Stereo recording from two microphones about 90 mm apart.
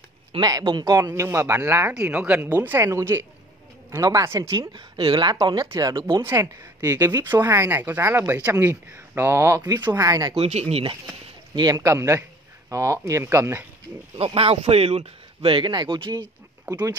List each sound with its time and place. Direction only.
0.4 s speech: 45° right (ahead or behind)
4.7 s speech: 70° right (ahead or behind)
5.3 s speech: 50° right (ahead or behind)
6.2 s speech: 30° right (ahead or behind); by 7.2 s 45° right (ahead or behind)
7.2 s speech: 30° right (ahead or behind)
10.0 s speech: 45° right (ahead or behind)
10.4 s speech: 90° right
11.6 s a man's voice: 40° right (ahead or behind)
14.1 s speech: 90° right
15.7 s speech: 60° right (ahead or behind)